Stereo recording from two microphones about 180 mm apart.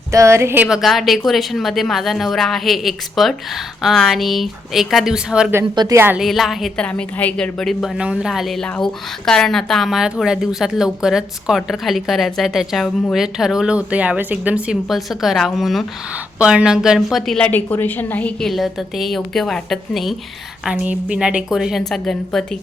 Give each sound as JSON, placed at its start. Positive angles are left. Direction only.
{"t": 0.1, "sound": "speech", "side_deg": -15}
{"t": 5.7, "sound": "speech", "side_deg": -25}
{"t": 6.0, "sound": "speech", "side_deg": -10}